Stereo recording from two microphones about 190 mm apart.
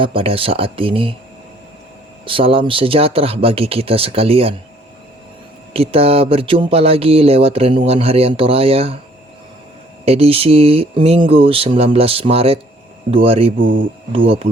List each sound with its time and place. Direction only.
0.0 s speech: 30° right (ahead or behind)
2.2 s speech: 30° right (ahead or behind)
5.7 s speech: 30° right (ahead or behind)
10.1 s speech: 30° right (ahead or behind)
13.6 s speech: 45° right (ahead or behind)